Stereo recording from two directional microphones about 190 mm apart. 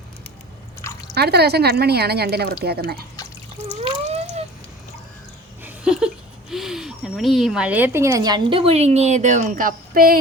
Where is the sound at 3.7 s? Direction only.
35° right (ahead or behind).